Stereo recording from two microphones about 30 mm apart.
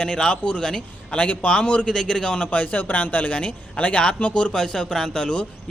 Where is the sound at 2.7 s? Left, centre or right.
Left.